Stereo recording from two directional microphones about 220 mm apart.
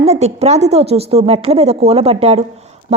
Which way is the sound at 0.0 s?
30° right (ahead or behind).